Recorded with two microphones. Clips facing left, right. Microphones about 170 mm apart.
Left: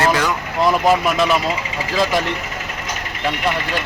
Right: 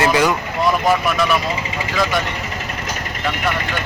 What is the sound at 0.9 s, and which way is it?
Speech, 20° left (ahead or behind).